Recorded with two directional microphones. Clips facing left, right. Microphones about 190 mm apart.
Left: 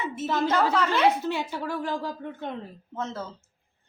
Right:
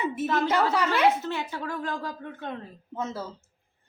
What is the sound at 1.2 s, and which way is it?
A woman's voice, 15° left (ahead or behind).